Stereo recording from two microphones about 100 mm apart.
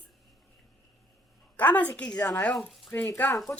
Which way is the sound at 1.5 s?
15° left (ahead or behind).